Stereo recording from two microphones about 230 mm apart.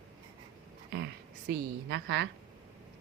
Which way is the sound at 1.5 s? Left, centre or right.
Right.